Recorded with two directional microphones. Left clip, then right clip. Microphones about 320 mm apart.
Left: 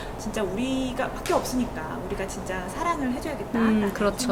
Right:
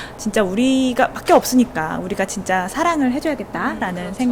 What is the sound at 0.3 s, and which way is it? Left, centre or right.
Speech, right.